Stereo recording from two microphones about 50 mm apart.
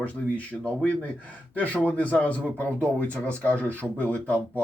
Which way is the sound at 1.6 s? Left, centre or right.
Left.